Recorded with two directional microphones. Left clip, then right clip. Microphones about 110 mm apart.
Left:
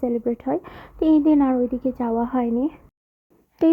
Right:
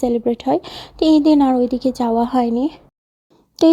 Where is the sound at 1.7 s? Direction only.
90° right.